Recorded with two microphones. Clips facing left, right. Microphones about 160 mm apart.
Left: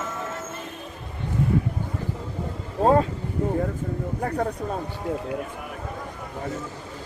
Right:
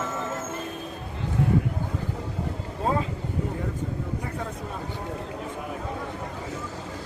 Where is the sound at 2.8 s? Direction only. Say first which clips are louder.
Left 8 dB; 50° left (ahead or behind).